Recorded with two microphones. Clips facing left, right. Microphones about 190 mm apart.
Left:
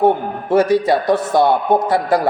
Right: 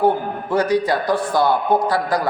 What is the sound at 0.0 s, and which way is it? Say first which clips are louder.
A man's voice: left 3 dB; 25° left (ahead or behind).